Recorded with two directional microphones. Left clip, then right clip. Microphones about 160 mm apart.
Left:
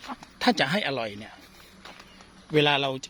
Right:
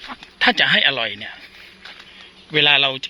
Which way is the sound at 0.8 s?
15° left (ahead or behind).